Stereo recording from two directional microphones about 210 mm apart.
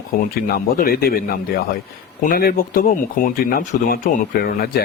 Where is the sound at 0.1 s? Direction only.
45° left (ahead or behind).